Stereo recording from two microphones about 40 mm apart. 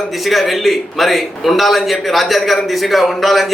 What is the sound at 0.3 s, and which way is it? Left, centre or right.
A man's voice, centre.